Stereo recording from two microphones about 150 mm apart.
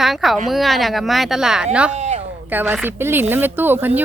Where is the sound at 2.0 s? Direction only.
45° right (ahead or behind).